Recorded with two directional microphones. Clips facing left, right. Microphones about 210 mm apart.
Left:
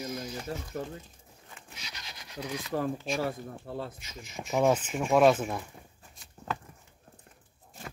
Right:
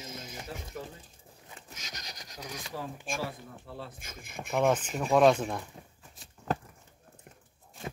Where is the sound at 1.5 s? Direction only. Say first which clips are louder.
Right 1 dB; 45° right (ahead or behind).